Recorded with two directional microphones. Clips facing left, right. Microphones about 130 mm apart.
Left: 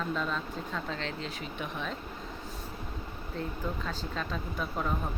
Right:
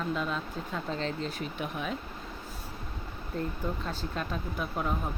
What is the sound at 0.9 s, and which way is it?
Speech, 40° right (ahead or behind).